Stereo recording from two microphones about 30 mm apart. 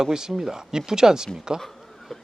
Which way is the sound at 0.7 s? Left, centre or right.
Right.